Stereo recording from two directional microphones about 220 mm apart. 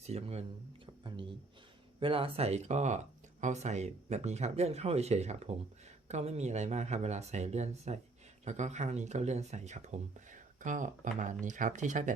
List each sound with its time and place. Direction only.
0.0 s speech: 30° right (ahead or behind)